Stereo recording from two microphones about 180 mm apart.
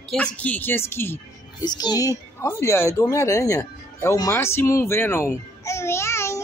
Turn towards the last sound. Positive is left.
turn(degrees=15)  # may be behind; listen again after turning